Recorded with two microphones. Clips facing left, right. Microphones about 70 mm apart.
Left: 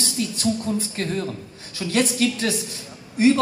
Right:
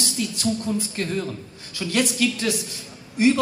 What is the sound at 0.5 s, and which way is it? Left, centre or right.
A man's voice, centre.